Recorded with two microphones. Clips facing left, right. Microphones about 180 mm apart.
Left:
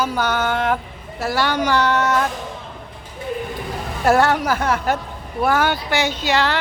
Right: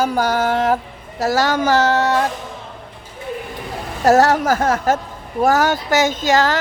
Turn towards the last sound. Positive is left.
turn(degrees=-45)  # may be behind; listen again after turning